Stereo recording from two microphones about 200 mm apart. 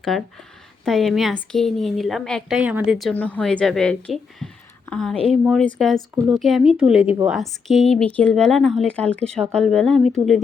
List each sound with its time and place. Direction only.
0.1 s a woman's voice: centre (ahead or behind)